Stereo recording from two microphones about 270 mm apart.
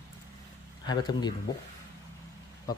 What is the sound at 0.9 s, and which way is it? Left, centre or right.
Speech, centre.